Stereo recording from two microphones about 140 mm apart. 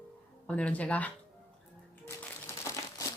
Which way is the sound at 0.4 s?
10° left (ahead or behind).